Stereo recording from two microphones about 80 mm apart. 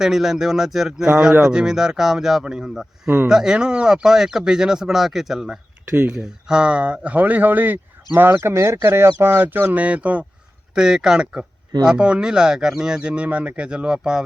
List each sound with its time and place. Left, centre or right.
0.0 s a man's voice: centre
5.9 s speech: right
6.1 s speech: centre